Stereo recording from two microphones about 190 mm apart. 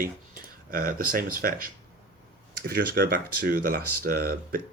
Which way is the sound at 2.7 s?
55° right (ahead or behind).